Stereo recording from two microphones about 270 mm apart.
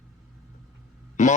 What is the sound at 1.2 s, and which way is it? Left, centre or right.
Speech, left.